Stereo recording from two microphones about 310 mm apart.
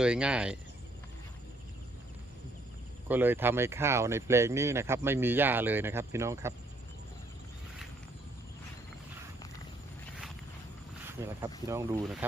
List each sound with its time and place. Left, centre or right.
0.0 s speech: centre
3.1 s speech: centre
11.2 s speech: centre